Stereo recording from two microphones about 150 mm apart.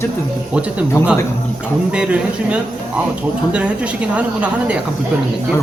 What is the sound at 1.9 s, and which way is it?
Speech, 5° right (ahead or behind).